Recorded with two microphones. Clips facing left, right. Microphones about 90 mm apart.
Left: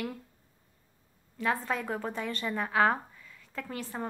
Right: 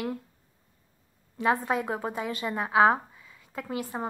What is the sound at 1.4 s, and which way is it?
A woman's voice, 15° right (ahead or behind).